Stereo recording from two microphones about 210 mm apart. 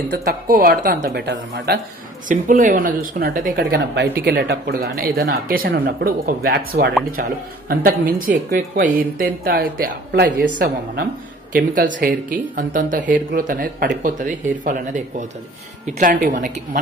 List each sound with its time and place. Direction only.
0.1 s speech: 50° right (ahead or behind)
2.2 s speech: 40° right (ahead or behind)
11.5 s speech: 40° right (ahead or behind)